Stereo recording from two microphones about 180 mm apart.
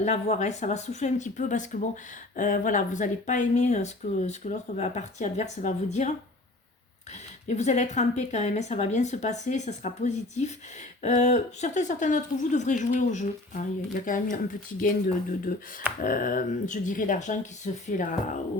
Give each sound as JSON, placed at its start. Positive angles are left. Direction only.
{"t": 0.0, "sound": "speech", "side_deg": 40}
{"t": 7.4, "sound": "speech", "side_deg": 40}